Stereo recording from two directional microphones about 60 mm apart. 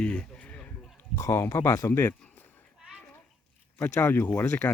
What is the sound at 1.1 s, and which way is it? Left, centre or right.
Speech, left.